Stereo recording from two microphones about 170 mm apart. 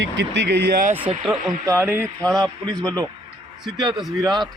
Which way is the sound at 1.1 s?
35° right (ahead or behind).